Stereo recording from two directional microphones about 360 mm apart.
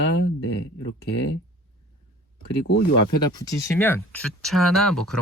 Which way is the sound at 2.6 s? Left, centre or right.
Left.